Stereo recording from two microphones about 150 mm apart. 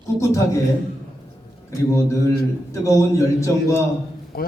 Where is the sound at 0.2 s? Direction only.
20° left (ahead or behind).